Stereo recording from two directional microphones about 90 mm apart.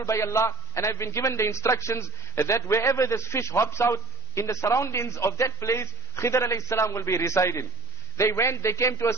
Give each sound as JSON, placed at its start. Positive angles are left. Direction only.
{"t": 0.0, "sound": "a man's voice", "side_deg": 35}